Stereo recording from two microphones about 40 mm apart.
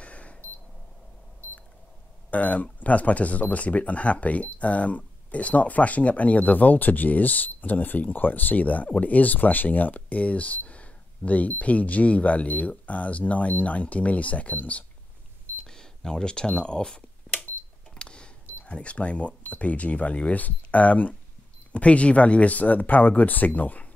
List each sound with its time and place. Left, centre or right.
0.0 s camera: left
2.3 s speech: left
15.6 s finger snapping: centre
17.9 s cash register: left
18.7 s speech: left
21.7 s speech: left